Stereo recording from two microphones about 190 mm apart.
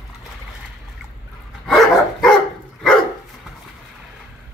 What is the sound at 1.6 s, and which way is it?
Dog, centre (ahead or behind).